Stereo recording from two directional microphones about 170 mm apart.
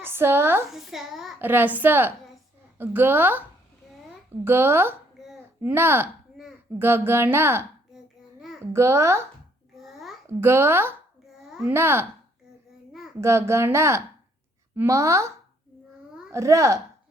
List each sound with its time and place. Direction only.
0.0 s a woman's voice: 15° right (ahead or behind)
0.7 s a child's voice: centre (ahead or behind)
1.4 s a woman's voice: 10° right (ahead or behind)
4.4 s a woman's voice: 15° right (ahead or behind)
5.2 s a sound: centre (ahead or behind)
5.7 s a woman's voice: 15° right (ahead or behind)
7.9 s babbling: centre (ahead or behind)
8.7 s a woman's voice: 15° right (ahead or behind)
9.7 s a sound: centre (ahead or behind)
10.2 s a woman's voice: 15° right (ahead or behind)
11.4 s a sound: 5° right (ahead or behind)
11.7 s a woman's voice: 15° right (ahead or behind)
13.2 s a woman's voice: 15° right (ahead or behind)
16.3 s a woman's voice: 20° right (ahead or behind)